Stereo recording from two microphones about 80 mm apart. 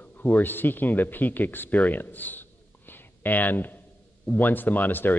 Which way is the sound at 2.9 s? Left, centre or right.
Left.